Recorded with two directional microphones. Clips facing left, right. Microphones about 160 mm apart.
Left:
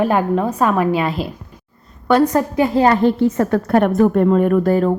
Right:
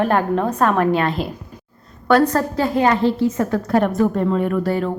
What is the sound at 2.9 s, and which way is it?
A woman's voice, 55° left (ahead or behind).